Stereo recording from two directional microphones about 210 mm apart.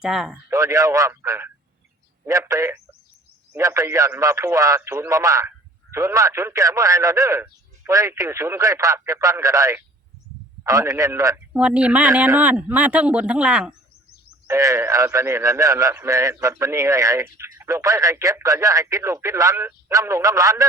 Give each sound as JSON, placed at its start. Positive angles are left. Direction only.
{"t": 0.0, "sound": "speech", "side_deg": -5}
{"t": 0.5, "sound": "a man's voice", "side_deg": -15}